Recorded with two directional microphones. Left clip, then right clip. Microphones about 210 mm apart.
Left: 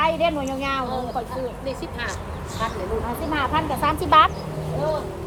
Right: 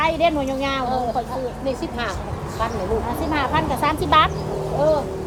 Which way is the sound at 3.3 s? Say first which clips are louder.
Right 1 dB; 10° left (ahead or behind).